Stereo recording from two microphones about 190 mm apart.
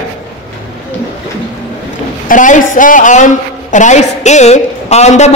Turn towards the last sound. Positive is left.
turn(degrees=35)  # may be behind; listen again after turning